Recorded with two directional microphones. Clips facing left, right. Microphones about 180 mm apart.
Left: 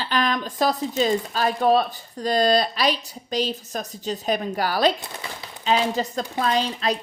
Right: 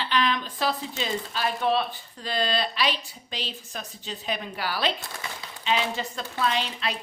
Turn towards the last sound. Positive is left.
turn(degrees=40)  # may be behind; listen again after turning